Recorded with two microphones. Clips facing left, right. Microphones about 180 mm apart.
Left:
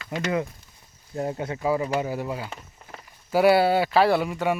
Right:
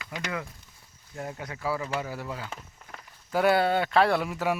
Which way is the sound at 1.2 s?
30° left (ahead or behind).